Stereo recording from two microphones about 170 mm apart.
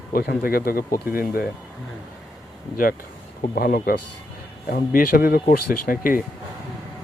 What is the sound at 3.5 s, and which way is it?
Speech, 60° left (ahead or behind).